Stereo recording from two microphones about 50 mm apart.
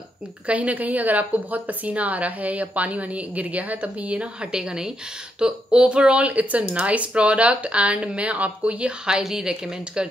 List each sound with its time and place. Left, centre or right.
0.5 s a woman's voice: right; by 10.0 s centre